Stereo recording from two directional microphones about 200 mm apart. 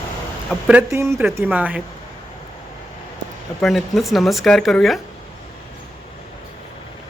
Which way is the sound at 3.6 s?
Centre (ahead or behind).